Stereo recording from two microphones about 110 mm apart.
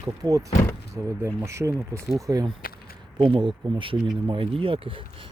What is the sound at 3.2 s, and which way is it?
Speech, 45° right (ahead or behind).